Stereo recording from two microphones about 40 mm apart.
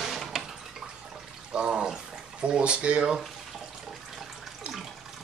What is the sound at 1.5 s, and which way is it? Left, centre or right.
Water, right.